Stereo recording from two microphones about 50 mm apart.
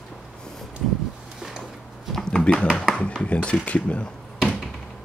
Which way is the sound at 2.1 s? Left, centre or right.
Centre.